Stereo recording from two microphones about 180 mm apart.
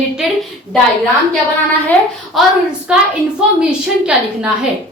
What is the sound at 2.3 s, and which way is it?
Speech, centre (ahead or behind).